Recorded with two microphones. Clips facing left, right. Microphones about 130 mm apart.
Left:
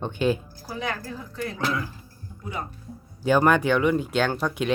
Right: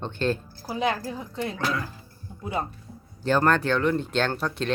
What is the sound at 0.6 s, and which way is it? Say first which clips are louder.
Speech: right 5 dB; 20° right (ahead or behind).